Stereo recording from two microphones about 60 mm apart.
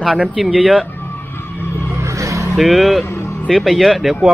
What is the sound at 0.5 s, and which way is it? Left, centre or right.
Speech, centre.